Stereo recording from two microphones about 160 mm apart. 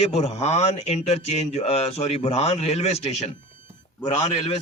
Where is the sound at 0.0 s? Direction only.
40° left (ahead or behind).